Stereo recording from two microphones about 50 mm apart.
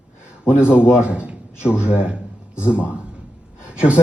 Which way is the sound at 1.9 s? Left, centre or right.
Right.